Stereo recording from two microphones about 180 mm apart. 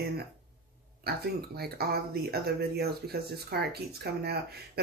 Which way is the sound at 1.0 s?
60° right (ahead or behind).